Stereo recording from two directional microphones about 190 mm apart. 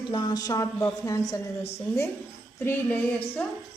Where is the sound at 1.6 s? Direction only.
35° left (ahead or behind).